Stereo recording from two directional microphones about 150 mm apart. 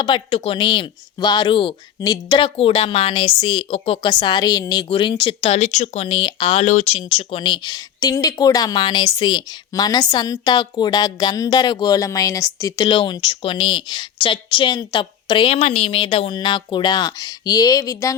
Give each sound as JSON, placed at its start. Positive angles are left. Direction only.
{"t": 0.0, "sound": "a woman's voice", "side_deg": 35}
{"t": 5.4, "sound": "speech", "side_deg": 45}
{"t": 7.0, "sound": "a woman's voice", "side_deg": 35}